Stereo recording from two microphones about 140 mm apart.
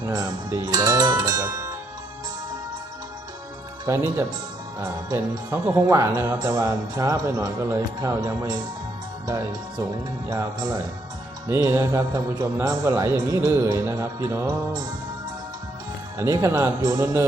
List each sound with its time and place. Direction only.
0.0 s speech: 25° right (ahead or behind)
3.8 s speech: 20° right (ahead or behind)
16.1 s speech: 20° right (ahead or behind)